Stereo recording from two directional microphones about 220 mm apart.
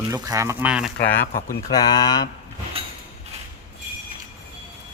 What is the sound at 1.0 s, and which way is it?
Speech, 10° left (ahead or behind).